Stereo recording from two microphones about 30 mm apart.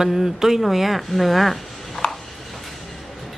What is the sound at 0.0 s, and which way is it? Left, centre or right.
Speech, centre.